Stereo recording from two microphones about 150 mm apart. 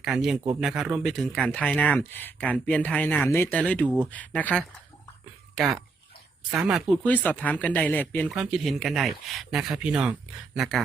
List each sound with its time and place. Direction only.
0.0 s speech: 5° right (ahead or behind)
3.8 s speech: 10° right (ahead or behind)
4.1 s speech: 10° left (ahead or behind)
5.5 s speech: centre (ahead or behind)
7.0 s speech: 10° left (ahead or behind)
8.3 s speech: 5° right (ahead or behind)